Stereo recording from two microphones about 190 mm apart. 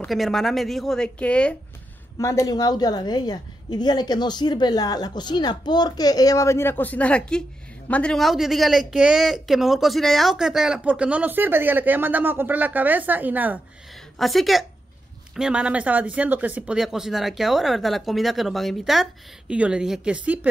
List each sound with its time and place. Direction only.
0.0 s speech: centre (ahead or behind)
2.1 s a woman's voice: 15° left (ahead or behind); by 20.3 s 5° right (ahead or behind)